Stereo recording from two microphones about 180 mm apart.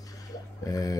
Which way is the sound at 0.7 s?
20° left (ahead or behind).